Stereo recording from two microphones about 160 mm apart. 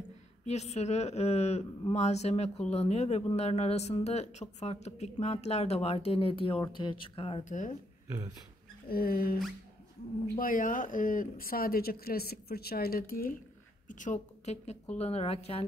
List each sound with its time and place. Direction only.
0.5 s a woman's voice: 45° left (ahead or behind)
8.8 s speech: 65° left (ahead or behind)
13.8 s a woman's voice: 50° left (ahead or behind)